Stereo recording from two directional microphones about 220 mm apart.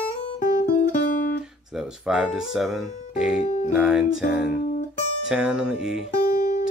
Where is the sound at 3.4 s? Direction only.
40° left (ahead or behind).